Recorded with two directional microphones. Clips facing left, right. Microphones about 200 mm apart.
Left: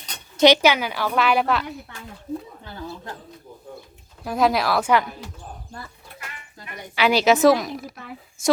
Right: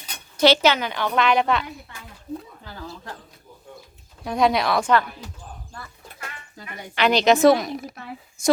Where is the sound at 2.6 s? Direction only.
20° left (ahead or behind).